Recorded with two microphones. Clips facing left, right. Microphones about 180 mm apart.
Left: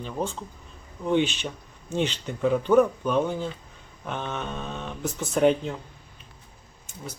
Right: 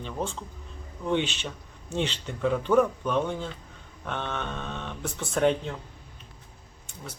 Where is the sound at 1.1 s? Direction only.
30° right (ahead or behind).